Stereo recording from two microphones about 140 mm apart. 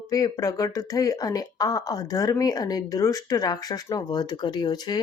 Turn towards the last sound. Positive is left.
turn(degrees=30)  # may be behind; listen again after turning